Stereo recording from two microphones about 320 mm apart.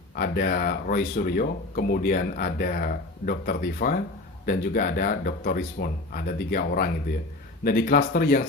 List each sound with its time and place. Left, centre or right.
0.2 s speech: left